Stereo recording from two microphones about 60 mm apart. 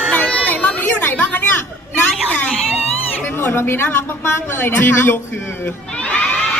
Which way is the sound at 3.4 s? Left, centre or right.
Left.